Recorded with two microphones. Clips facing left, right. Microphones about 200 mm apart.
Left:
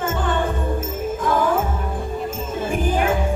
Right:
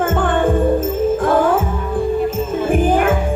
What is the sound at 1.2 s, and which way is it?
Music, 55° right (ahead or behind).